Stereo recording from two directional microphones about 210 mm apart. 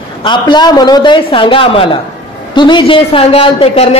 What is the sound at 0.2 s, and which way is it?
A woman's voice, 20° left (ahead or behind).